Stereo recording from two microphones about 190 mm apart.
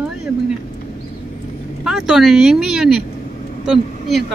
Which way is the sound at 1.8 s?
Centre (ahead or behind).